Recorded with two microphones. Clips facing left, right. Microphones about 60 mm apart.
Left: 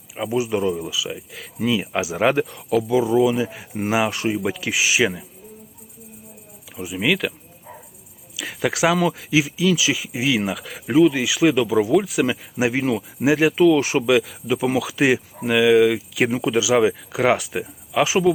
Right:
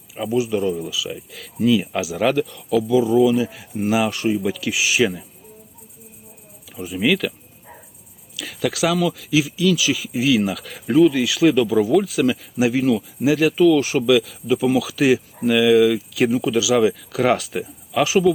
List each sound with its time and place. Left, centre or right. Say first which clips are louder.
0.3 s speech: right 1 dB; left
4.9 s speech: right 2 dB; centre
6.7 s speech: right 2 dB; centre
8.6 s speech: left 1 dB; left
13.2 s speech: even; left; by 18.0 s centre
18.0 s speech: right 2 dB; centre